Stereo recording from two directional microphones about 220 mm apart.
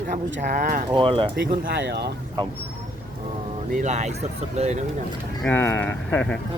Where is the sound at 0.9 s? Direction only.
25° right (ahead or behind).